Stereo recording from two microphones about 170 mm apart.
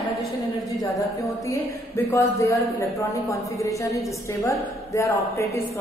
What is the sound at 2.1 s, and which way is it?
A woman's voice, 15° left (ahead or behind).